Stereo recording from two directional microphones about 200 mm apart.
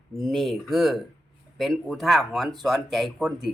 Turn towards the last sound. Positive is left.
turn(degrees=-5)  # may be behind; listen again after turning